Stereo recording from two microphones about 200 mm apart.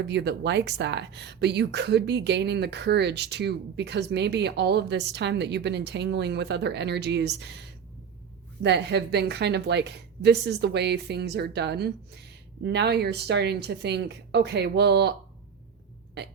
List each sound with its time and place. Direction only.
0.1 s speech: 60° right (ahead or behind)
8.6 s speech: 60° right (ahead or behind)